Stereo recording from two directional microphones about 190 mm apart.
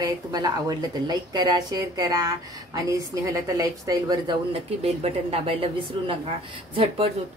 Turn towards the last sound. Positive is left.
turn(degrees=-30)  # may be behind; listen again after turning